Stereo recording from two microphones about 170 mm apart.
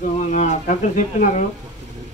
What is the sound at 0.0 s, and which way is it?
A man's voice, 45° left (ahead or behind).